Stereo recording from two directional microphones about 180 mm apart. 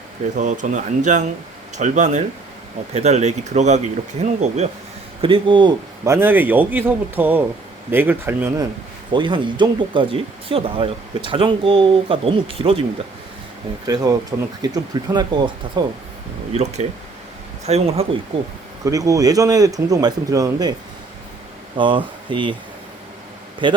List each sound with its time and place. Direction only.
0.3 s speech: 45° right (ahead or behind); by 5.7 s 25° right (ahead or behind)
6.1 s speech: 10° right (ahead or behind)
9.1 s speech: 25° right (ahead or behind)
13.8 s speech: 20° right (ahead or behind)
16.5 s speech: 35° right (ahead or behind)
18.9 s speech: 20° right (ahead or behind)
21.8 s speech: 25° right (ahead or behind)
23.6 s speech: 25° right (ahead or behind)